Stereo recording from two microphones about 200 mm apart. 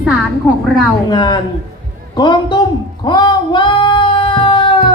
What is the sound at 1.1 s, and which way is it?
A man's voice, 20° left (ahead or behind).